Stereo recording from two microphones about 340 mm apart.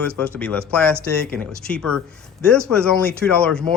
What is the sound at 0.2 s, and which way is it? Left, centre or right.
Speech, centre.